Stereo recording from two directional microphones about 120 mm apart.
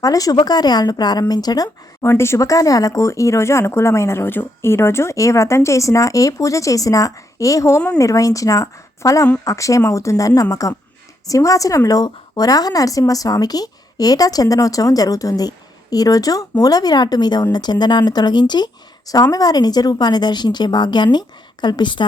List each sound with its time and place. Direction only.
0.0 s a woman's voice: 30° left (ahead or behind)